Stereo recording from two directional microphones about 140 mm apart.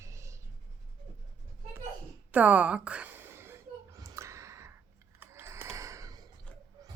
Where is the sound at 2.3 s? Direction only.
10° right (ahead or behind).